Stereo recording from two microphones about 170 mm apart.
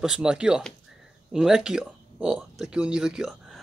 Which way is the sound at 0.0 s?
5° right (ahead or behind).